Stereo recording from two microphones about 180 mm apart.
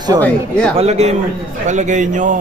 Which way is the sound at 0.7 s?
35° right (ahead or behind).